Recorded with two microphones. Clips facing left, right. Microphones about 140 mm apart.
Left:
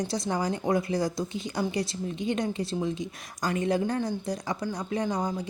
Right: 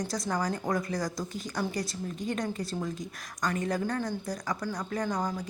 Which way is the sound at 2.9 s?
Centre (ahead or behind).